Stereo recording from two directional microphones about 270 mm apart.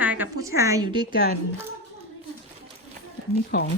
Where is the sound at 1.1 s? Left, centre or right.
Left.